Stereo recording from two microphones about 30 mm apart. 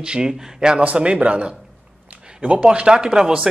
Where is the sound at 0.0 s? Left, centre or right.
Right.